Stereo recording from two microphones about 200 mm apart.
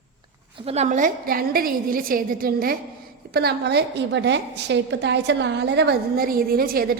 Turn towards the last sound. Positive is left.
turn(degrees=-50)  # may be behind; listen again after turning